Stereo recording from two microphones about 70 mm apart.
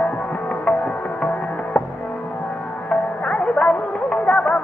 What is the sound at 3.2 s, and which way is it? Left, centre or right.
Music, centre.